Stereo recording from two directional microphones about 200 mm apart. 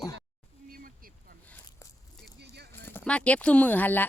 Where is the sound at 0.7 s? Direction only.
45° right (ahead or behind).